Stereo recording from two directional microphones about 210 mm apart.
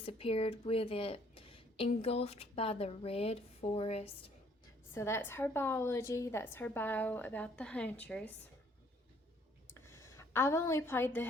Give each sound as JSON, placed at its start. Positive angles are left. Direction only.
{"t": 0.0, "sound": "a woman's voice", "side_deg": 25}
{"t": 4.9, "sound": "a woman's voice", "side_deg": 10}
{"t": 9.6, "sound": "a sound", "side_deg": 10}